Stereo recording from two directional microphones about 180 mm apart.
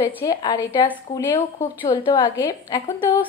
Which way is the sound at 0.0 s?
20° left (ahead or behind).